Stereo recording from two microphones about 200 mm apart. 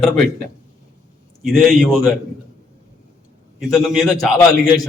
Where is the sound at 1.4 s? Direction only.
Centre (ahead or behind).